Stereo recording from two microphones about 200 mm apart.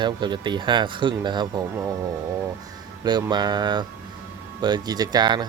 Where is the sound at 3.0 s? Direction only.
20° right (ahead or behind).